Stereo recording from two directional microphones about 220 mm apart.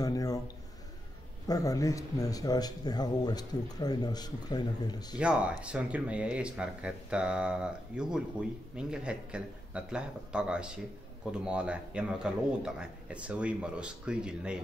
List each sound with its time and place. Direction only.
0.0 s a sound: 15° left (ahead or behind)
1.5 s speech: 15° left (ahead or behind)
5.2 s speech: 5° right (ahead or behind)